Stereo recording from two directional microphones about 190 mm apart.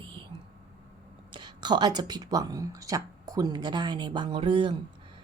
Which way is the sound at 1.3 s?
25° right (ahead or behind).